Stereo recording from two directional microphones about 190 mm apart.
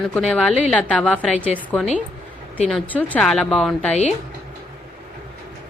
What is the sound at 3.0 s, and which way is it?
Speech, 5° left (ahead or behind).